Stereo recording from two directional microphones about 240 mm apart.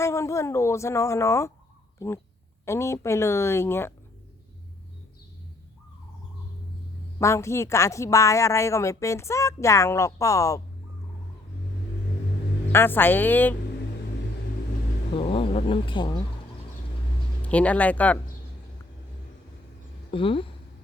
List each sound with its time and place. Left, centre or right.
0.0 s a woman's voice: centre
7.2 s a woman's voice: centre
12.7 s a woman's voice: centre
15.1 s speech: left
17.4 s speech: centre
20.1 s speech: left